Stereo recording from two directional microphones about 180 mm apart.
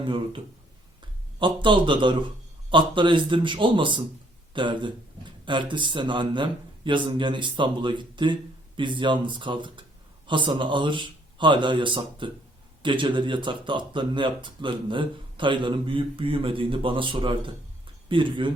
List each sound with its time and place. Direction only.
0.0 s speech: 30° right (ahead or behind)